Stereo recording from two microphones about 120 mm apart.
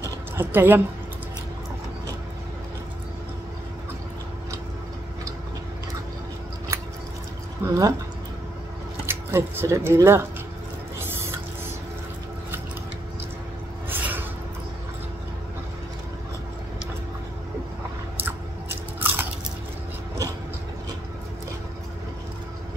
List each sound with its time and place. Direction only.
0.4 s a woman's voice: 20° right (ahead or behind)
7.6 s speech: 25° right (ahead or behind)
9.0 s speech: 20° right (ahead or behind)
11.0 s drip: 20° right (ahead or behind)
13.8 s a sound: 15° right (ahead or behind)
18.9 s biting: 15° right (ahead or behind)